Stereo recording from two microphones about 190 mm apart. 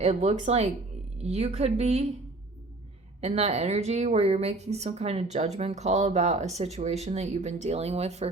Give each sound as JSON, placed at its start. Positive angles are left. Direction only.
{"t": 0.0, "sound": "speech", "side_deg": -35}
{"t": 3.2, "sound": "speech", "side_deg": -35}